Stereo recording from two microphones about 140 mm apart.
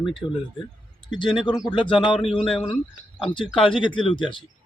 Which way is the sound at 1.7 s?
35° left (ahead or behind).